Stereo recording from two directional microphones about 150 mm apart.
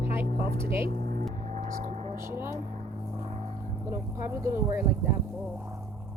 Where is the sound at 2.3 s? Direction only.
15° right (ahead or behind).